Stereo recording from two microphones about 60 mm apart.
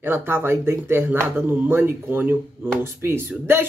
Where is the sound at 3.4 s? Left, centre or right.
Right.